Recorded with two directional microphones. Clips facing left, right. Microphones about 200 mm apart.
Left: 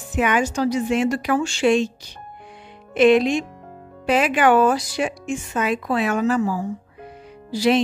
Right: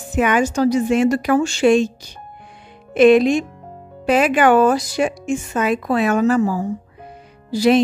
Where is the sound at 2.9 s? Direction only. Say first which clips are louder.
Right 4 dB; 45° right (ahead or behind).